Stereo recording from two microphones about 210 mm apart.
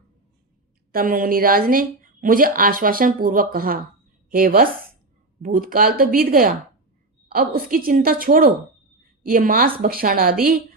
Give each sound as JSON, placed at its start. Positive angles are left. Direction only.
{"t": 0.9, "sound": "speech", "side_deg": -40}